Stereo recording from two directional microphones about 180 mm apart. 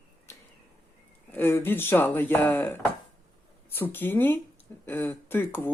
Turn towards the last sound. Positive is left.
turn(degrees=10)  # may be behind; listen again after turning